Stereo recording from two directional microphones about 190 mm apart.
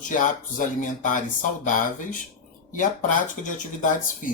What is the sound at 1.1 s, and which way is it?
Speech, 45° left (ahead or behind).